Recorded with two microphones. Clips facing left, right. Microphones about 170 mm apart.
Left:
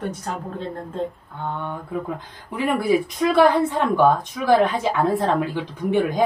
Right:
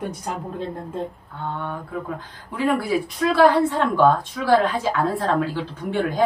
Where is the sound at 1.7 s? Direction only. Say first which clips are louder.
Left 1 dB; 20° left (ahead or behind).